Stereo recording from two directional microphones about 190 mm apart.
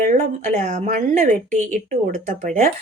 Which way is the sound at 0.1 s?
40° right (ahead or behind).